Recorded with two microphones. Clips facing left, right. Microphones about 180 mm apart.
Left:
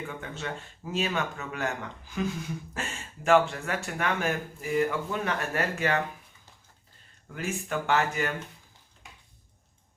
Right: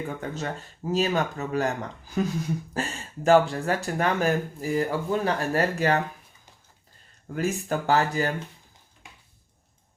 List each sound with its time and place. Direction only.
0.2 s speech: 40° right (ahead or behind)
7.3 s speech: 40° right (ahead or behind)